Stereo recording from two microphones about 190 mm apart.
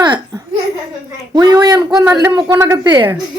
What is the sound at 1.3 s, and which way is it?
A woman's voice, 20° right (ahead or behind).